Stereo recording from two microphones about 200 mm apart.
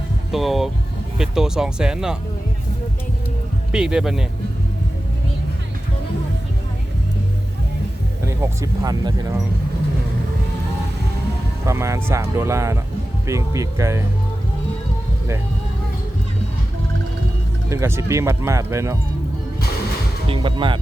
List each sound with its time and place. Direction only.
0.3 s speech: centre (ahead or behind)
3.7 s speech: 5° right (ahead or behind)
8.3 s speech: 15° right (ahead or behind)
11.6 s speech: 15° right (ahead or behind)
17.7 s speech: 15° right (ahead or behind)
20.2 s speech: 25° right (ahead or behind)